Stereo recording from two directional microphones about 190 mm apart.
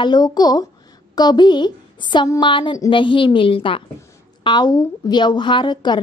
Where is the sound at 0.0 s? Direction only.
20° left (ahead or behind).